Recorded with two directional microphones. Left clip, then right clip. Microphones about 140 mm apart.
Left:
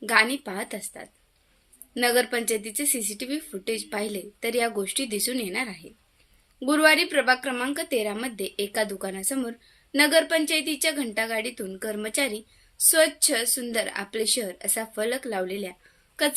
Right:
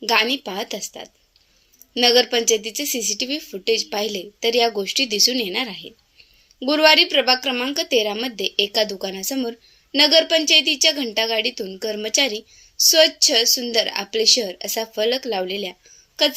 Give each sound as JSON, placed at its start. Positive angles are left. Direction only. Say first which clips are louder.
{"t": 0.0, "sound": "a woman's voice", "louder": "right 3 dB", "side_deg": -10}